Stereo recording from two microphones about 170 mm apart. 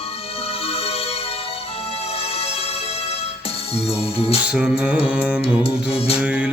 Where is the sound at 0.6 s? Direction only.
35° left (ahead or behind).